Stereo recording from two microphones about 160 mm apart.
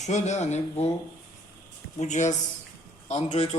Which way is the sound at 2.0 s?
45° left (ahead or behind).